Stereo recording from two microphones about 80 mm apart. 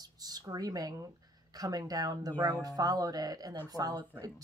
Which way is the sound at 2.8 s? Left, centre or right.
Right.